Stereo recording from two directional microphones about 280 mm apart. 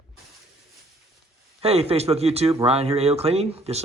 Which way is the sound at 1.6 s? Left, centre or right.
Right.